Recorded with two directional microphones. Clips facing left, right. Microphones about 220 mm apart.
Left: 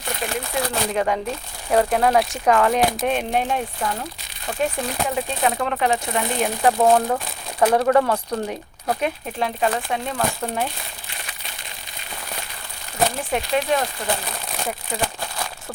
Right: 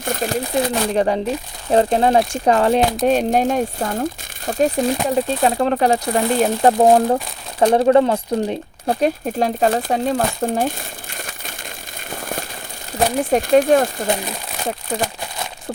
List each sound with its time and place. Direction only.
0.0 s speech: 45° right (ahead or behind)
11.1 s crumpling: 45° right (ahead or behind)
12.1 s fireworks: 45° right (ahead or behind)
13.3 s speech: 45° right (ahead or behind)